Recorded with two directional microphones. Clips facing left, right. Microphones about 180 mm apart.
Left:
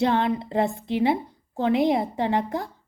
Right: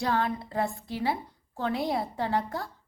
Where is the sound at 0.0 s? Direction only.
20° left (ahead or behind).